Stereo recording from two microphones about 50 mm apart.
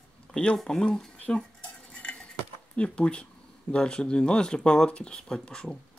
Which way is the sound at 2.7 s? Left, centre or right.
Left.